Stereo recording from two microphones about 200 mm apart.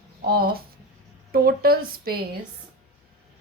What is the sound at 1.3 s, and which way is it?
Speech, 50° right (ahead or behind).